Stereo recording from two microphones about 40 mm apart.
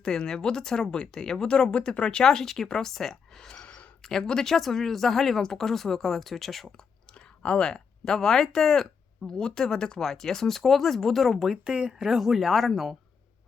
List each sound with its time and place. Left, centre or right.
0.0 s speech: centre
3.5 s a sound: left
4.2 s speech: left
4.4 s speech: centre
6.7 s speech: left
9.4 s speech: centre
11.5 s speech: right
11.9 s speech: centre